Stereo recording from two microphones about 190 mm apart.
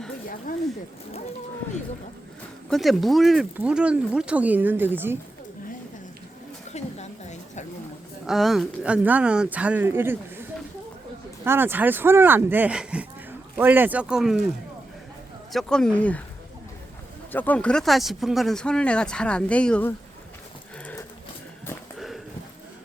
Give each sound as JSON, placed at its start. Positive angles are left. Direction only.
{"t": 0.5, "sound": "a sound", "side_deg": 45}
{"t": 2.6, "sound": "speech", "side_deg": 0}
{"t": 6.7, "sound": "a sound", "side_deg": 35}
{"t": 8.3, "sound": "speech", "side_deg": 0}
{"t": 11.4, "sound": "speech", "side_deg": -10}
{"t": 15.5, "sound": "speech", "side_deg": 5}
{"t": 17.3, "sound": "speech", "side_deg": 10}
{"t": 21.9, "sound": "horse", "side_deg": 0}